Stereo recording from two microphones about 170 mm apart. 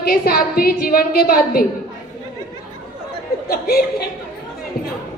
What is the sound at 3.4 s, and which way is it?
Speech, 60° left (ahead or behind).